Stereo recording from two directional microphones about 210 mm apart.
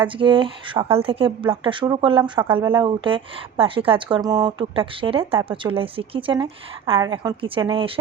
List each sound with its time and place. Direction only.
0.0 s speech: 25° right (ahead or behind)
2.5 s speech: 10° right (ahead or behind)
2.7 s speech: 25° right (ahead or behind)